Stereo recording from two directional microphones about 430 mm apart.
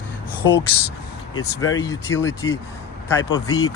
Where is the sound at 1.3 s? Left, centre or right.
Left.